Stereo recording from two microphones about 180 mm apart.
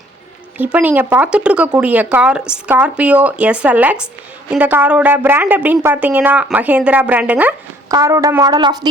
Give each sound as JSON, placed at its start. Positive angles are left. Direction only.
{"t": 0.6, "sound": "speech", "side_deg": -10}
{"t": 7.9, "sound": "speech", "side_deg": -20}